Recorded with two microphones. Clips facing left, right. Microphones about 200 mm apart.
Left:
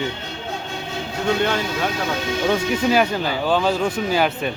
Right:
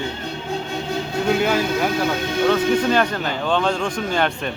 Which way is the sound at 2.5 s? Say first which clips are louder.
Even; 10° left (ahead or behind).